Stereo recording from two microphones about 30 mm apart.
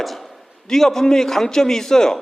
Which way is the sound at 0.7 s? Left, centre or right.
Centre.